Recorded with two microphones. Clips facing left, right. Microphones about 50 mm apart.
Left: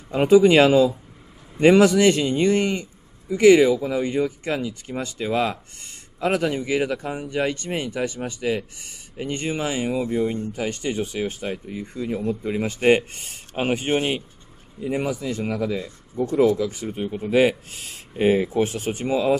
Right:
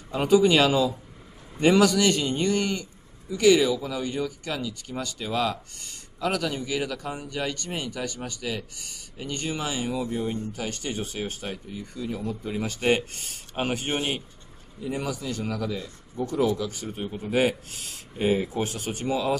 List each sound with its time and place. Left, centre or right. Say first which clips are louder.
0.1 s speech: left 5 dB; left